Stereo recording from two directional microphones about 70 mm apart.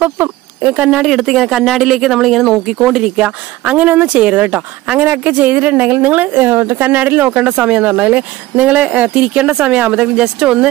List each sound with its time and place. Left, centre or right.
0.0 s speech: centre
1.0 s speech: centre
3.2 s a woman's voice: centre
5.0 s a woman's voice: right; by 10.7 s centre